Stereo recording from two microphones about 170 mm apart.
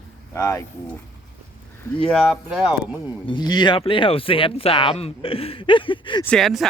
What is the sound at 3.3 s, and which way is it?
Speech, 25° left (ahead or behind).